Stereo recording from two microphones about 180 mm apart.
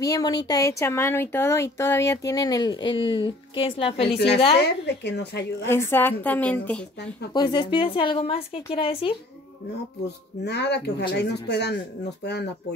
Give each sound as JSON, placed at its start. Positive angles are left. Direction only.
{"t": 0.0, "sound": "a woman's voice", "side_deg": 20}
{"t": 4.8, "sound": "speech", "side_deg": 70}
{"t": 5.7, "sound": "a woman's voice", "side_deg": 15}
{"t": 7.3, "sound": "speech", "side_deg": 25}
{"t": 10.0, "sound": "speech", "side_deg": 70}